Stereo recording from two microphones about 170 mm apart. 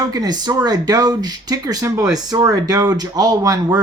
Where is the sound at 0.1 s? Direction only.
20° right (ahead or behind).